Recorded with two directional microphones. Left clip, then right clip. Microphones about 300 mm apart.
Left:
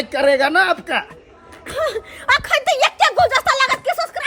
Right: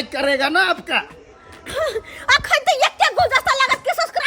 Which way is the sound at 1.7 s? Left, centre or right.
Centre.